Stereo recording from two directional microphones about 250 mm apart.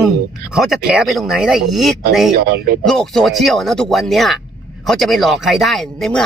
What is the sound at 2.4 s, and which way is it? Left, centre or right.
Speech, right.